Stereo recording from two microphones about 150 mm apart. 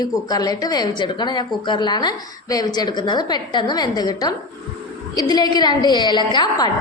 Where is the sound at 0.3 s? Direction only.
25° left (ahead or behind).